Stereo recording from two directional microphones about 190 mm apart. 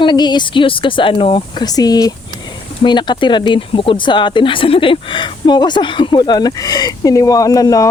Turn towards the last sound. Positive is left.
turn(degrees=20)  # may be behind; listen again after turning